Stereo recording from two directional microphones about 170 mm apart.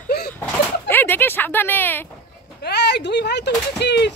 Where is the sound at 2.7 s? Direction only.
80° left.